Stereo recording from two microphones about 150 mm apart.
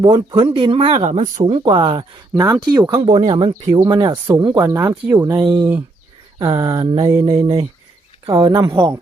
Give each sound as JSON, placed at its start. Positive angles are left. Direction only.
{"t": 0.0, "sound": "speech", "side_deg": -30}
{"t": 0.9, "sound": "speech", "side_deg": -50}
{"t": 1.6, "sound": "speech", "side_deg": -35}
{"t": 2.3, "sound": "speech", "side_deg": -20}
{"t": 3.2, "sound": "speech", "side_deg": -40}
{"t": 6.8, "sound": "speech", "side_deg": -35}
{"t": 8.3, "sound": "speech", "side_deg": -25}